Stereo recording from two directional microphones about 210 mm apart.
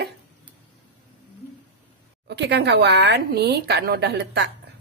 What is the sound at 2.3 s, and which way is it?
A woman's voice, 55° right (ahead or behind).